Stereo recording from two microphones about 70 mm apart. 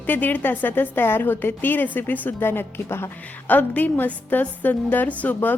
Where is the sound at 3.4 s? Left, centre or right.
Left.